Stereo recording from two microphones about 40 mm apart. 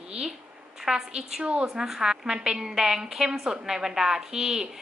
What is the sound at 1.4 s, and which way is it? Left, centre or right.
Speech, right.